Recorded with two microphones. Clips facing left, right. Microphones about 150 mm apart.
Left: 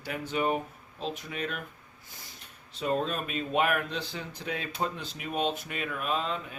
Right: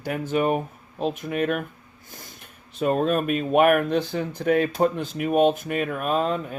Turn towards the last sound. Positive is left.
turn(degrees=-50)  # may be behind; listen again after turning